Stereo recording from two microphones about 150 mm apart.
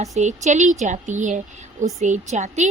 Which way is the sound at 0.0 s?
50° right (ahead or behind).